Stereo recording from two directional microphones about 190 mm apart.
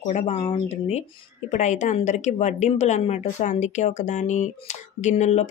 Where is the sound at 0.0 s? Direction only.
35° left (ahead or behind).